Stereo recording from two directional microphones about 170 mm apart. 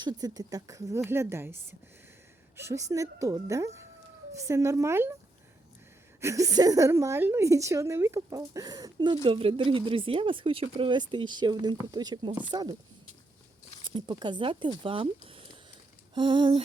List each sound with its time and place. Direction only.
0.0 s speech: 25° right (ahead or behind)
2.6 s a woman's voice: 15° right (ahead or behind)
6.1 s a woman's voice: 15° right (ahead or behind)
13.8 s speech: 30° right (ahead or behind)